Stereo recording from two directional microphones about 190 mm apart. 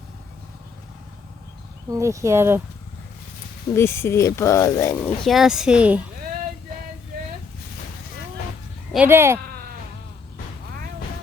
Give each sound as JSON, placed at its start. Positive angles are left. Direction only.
{"t": 1.9, "sound": "speech", "side_deg": -15}
{"t": 3.8, "sound": "speech", "side_deg": 15}
{"t": 8.9, "sound": "speech", "side_deg": -10}